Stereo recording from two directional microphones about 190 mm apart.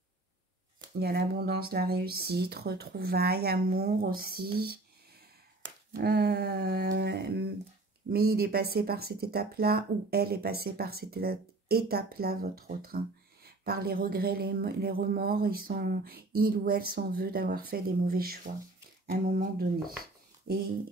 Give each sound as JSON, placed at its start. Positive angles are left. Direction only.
{"t": 0.9, "sound": "speech", "side_deg": -55}
{"t": 5.9, "sound": "a sound", "side_deg": -55}
{"t": 8.1, "sound": "speech", "side_deg": -55}